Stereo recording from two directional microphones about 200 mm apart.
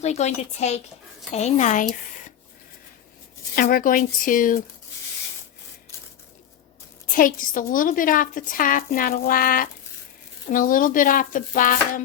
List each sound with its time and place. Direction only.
0.0 s a woman's voice: 35° left (ahead or behind)
3.5 s a woman's voice: 45° left (ahead or behind)
7.1 s a woman's voice: 45° left (ahead or behind)